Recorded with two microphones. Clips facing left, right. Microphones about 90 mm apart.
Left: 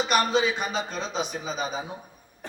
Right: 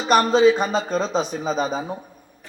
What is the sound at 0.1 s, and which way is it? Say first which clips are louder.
A man's voice: right 11 dB; 35° right (ahead or behind).